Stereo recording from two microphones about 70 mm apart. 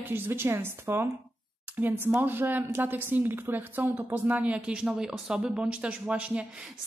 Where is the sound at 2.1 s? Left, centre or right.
Right.